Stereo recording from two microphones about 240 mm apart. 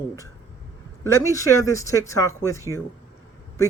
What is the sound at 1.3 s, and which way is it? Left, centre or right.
Speech, centre.